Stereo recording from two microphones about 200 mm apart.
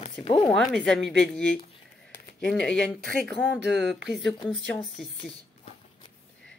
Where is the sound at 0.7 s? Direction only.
Centre (ahead or behind).